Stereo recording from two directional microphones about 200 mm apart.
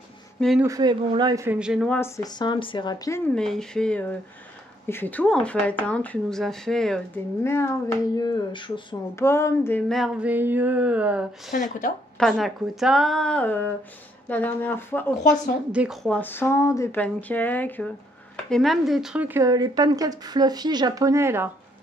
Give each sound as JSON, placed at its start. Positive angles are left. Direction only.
{"t": 0.4, "sound": "speech", "side_deg": 0}
{"t": 0.7, "sound": "speech", "side_deg": -20}
{"t": 2.0, "sound": "speech", "side_deg": 15}
{"t": 3.3, "sound": "speech", "side_deg": 5}
{"t": 7.4, "sound": "speech", "side_deg": 15}
{"t": 9.2, "sound": "speech", "side_deg": 15}
{"t": 11.5, "sound": "speech", "side_deg": 45}
{"t": 12.2, "sound": "speech", "side_deg": 0}
{"t": 15.7, "sound": "speech", "side_deg": -5}